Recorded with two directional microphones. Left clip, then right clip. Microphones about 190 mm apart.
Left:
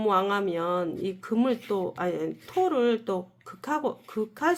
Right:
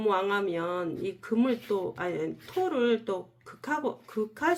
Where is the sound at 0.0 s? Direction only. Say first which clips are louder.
Left 2 dB; 40° left (ahead or behind).